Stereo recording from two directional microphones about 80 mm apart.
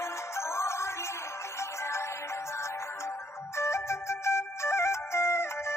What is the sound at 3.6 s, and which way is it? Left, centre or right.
Music, left.